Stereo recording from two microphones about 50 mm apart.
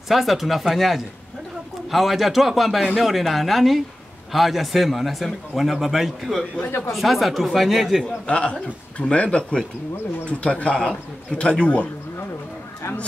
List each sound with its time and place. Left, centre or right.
0.1 s speech: centre
8.3 s a man's voice: left